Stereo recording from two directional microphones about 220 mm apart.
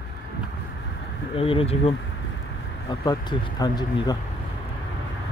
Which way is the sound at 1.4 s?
25° left (ahead or behind).